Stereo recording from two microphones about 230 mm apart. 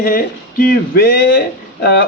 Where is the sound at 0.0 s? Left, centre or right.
Left.